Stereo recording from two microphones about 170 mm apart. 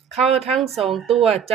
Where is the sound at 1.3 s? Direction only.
35° right (ahead or behind).